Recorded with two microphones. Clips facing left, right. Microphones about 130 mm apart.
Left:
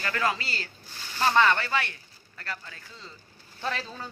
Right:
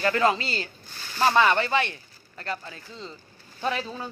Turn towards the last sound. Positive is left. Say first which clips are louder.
# right 4 dB
turn(degrees=-15)  # may be behind; listen again after turning